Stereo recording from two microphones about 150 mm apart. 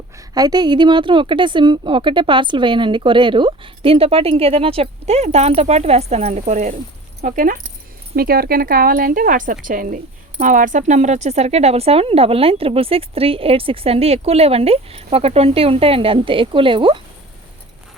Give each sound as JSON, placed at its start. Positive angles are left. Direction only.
{"t": 0.2, "sound": "speech", "side_deg": -25}
{"t": 8.1, "sound": "speech", "side_deg": -85}